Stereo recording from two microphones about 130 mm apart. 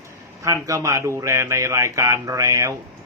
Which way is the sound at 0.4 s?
25° right (ahead or behind).